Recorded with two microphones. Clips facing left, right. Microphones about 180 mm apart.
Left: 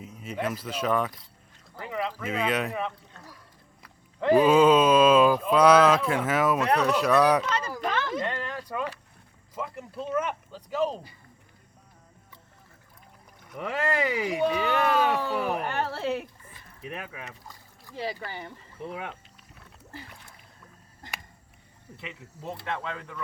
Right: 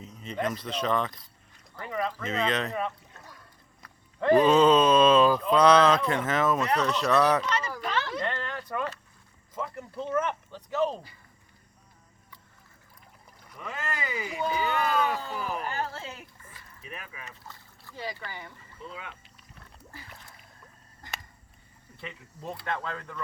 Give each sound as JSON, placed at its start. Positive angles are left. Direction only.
{"t": 0.0, "sound": "speech", "side_deg": 10}
{"t": 8.2, "sound": "a sound", "side_deg": 10}
{"t": 9.6, "sound": "speech", "side_deg": 10}
{"t": 13.6, "sound": "speech", "side_deg": 70}
{"t": 16.4, "sound": "a sound", "side_deg": 20}
{"t": 16.8, "sound": "speech", "side_deg": 70}
{"t": 17.4, "sound": "rowboat", "side_deg": 15}
{"t": 18.3, "sound": "speech", "side_deg": 30}
{"t": 18.8, "sound": "speech", "side_deg": 65}
{"t": 21.9, "sound": "speech", "side_deg": 5}